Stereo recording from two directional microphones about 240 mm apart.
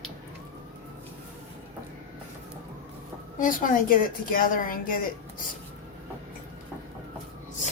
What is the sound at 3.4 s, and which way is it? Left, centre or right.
A woman's voice, left.